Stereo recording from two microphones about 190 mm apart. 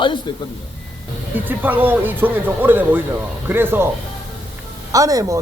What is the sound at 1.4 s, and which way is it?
Speech, 10° right (ahead or behind).